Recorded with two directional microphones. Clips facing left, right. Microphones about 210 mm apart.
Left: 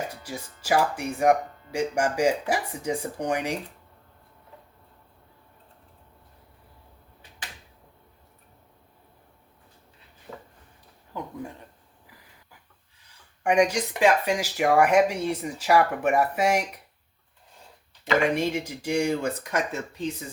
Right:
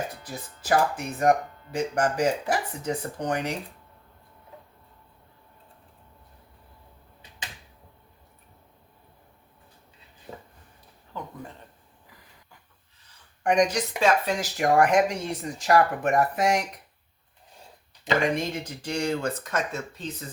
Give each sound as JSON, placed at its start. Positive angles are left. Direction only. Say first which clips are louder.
{"t": 0.1, "sound": "speech", "louder": "left 2 dB", "side_deg": 10}
{"t": 11.1, "sound": "speech", "louder": "left 2 dB", "side_deg": 15}
{"t": 13.4, "sound": "speech", "louder": "left 1 dB", "side_deg": 10}
{"t": 18.2, "sound": "speech", "louder": "left 4 dB", "side_deg": 10}